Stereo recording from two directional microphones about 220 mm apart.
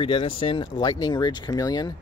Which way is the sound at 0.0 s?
25° left (ahead or behind).